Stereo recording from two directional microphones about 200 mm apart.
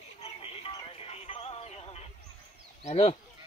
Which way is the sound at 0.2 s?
30° left (ahead or behind).